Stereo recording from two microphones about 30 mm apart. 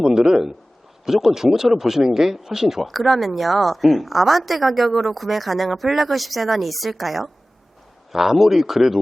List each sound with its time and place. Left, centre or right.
0.0 s a man's voice: right
2.8 s a woman's voice: centre
8.1 s speech: centre